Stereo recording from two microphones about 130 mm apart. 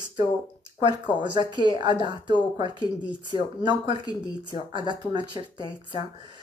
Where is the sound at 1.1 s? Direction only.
40° left (ahead or behind).